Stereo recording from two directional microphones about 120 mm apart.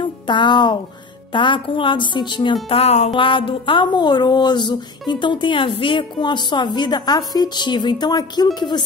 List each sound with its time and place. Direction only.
0.0 s speech: 40° left (ahead or behind)
2.8 s music: 65° left (ahead or behind)
3.2 s speech: 45° left (ahead or behind)